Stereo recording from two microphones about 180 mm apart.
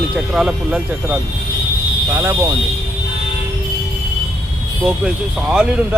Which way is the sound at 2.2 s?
15° right (ahead or behind).